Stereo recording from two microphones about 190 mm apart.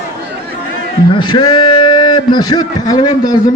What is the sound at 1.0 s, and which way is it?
A man's voice, 25° left (ahead or behind).